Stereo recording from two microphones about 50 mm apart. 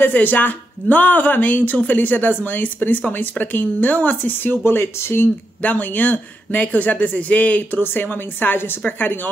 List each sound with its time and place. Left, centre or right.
0.0 s speech: left
5.6 s speech: left